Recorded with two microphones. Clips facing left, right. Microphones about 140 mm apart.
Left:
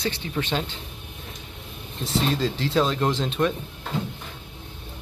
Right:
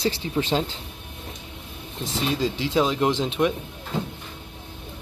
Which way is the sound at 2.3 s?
10° right (ahead or behind).